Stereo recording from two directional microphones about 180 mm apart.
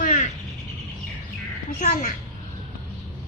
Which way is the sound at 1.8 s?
50° left (ahead or behind).